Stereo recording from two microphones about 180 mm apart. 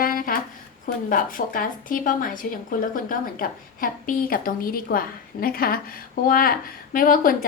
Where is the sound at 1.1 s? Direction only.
50° left (ahead or behind).